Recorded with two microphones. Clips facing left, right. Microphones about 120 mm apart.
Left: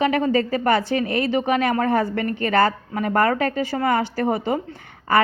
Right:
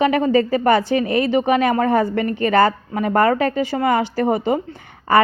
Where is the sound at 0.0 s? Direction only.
30° right (ahead or behind).